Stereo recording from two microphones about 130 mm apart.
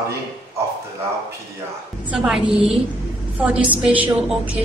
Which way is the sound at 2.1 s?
5° right (ahead or behind).